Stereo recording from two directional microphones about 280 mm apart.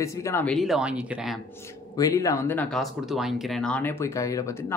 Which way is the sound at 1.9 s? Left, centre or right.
Centre.